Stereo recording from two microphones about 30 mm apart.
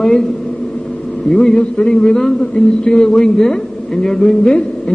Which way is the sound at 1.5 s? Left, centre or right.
Left.